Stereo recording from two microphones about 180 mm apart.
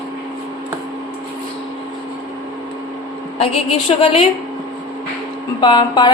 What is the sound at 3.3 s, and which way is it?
Speech, 35° left (ahead or behind).